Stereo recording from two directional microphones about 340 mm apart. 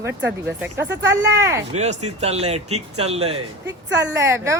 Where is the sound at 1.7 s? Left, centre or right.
Centre.